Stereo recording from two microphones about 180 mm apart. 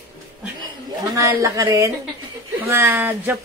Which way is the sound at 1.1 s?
15° right (ahead or behind).